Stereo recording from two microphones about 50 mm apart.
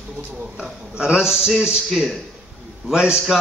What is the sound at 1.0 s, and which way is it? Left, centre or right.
Speech, centre.